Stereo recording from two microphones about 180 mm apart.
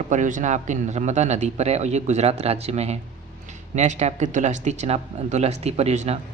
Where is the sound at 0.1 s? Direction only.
45° right (ahead or behind).